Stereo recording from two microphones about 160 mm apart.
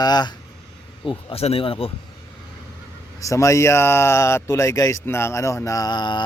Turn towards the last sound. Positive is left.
turn(degrees=30)  # may be behind; listen again after turning